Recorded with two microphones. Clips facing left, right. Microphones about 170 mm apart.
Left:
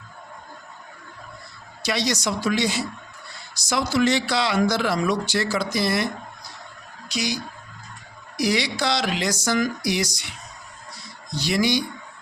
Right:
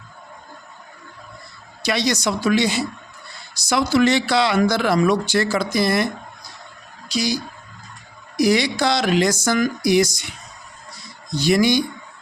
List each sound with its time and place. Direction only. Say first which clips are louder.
1.8 s speech: right 3 dB; 60° right (ahead or behind)
7.1 s speech: right 5 dB; 35° right (ahead or behind)
8.4 s speech: right 6 dB; 50° right (ahead or behind)
11.3 s speech: right 5 dB; 50° right (ahead or behind)